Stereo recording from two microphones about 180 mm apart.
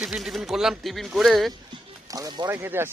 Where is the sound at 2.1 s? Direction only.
20° right (ahead or behind).